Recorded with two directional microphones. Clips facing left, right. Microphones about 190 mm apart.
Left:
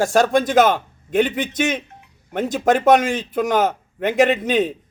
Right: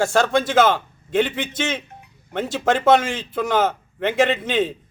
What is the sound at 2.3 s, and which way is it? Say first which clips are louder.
Speech: left 3 dB; 40° left (ahead or behind).